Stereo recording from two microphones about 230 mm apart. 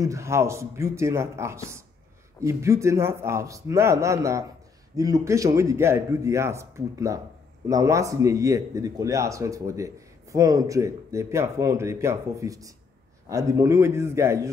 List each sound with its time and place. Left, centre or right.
0.0 s a man's voice: centre